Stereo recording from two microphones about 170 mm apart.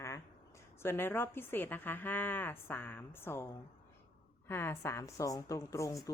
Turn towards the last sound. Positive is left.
turn(degrees=20)  # may be behind; listen again after turning